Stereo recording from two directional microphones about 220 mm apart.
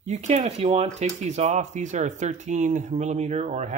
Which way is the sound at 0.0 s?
30° right (ahead or behind).